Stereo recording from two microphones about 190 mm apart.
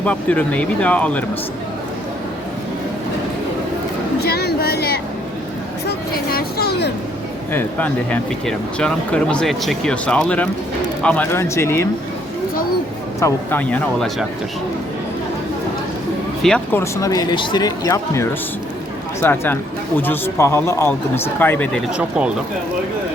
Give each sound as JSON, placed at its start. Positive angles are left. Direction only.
{"t": 0.0, "sound": "speech", "side_deg": 5}
{"t": 4.2, "sound": "speech", "side_deg": 55}
{"t": 6.3, "sound": "speech", "side_deg": 60}
{"t": 7.5, "sound": "speech", "side_deg": 5}
{"t": 13.1, "sound": "speech", "side_deg": 15}
{"t": 16.4, "sound": "speech", "side_deg": 5}
{"t": 16.8, "sound": "speech", "side_deg": 20}